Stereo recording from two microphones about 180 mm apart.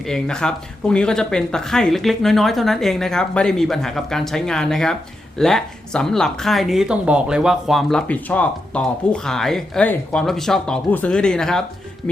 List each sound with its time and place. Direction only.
0.0 s a woman's voice: 5° left (ahead or behind)